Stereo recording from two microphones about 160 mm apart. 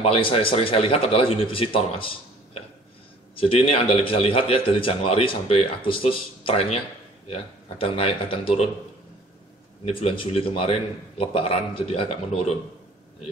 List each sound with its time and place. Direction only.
0.0 s a man's voice: 35° left (ahead or behind)
3.3 s a man's voice: 35° left (ahead or behind)
9.8 s a man's voice: 35° left (ahead or behind)